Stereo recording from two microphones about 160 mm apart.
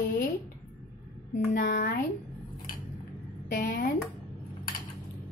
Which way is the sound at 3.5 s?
70° left (ahead or behind).